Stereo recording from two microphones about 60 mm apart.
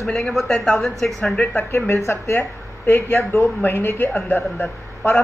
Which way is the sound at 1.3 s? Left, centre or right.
Left.